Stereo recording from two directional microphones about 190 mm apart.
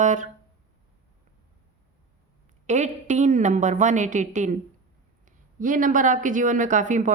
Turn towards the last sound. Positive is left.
turn(degrees=-40)  # may be behind; listen again after turning